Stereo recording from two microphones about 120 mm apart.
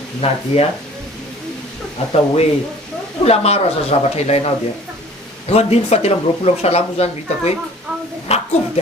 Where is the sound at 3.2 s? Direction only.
60° left (ahead or behind).